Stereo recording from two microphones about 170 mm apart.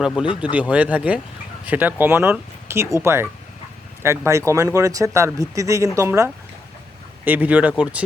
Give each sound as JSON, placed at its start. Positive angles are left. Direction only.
{"t": 0.2, "sound": "speech", "side_deg": -5}